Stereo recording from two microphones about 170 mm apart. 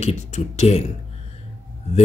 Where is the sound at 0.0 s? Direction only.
40° left (ahead or behind).